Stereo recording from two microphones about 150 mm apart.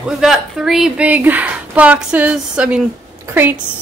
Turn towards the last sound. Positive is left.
turn(degrees=-15)  # may be behind; listen again after turning